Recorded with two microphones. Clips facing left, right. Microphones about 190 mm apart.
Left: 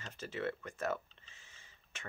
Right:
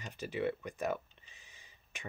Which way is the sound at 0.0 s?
15° right (ahead or behind).